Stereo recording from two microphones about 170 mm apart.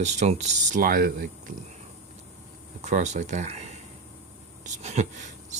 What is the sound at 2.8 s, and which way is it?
Speech, 45° right (ahead or behind).